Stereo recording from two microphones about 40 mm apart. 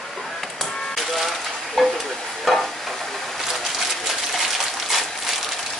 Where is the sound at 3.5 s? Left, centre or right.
Centre.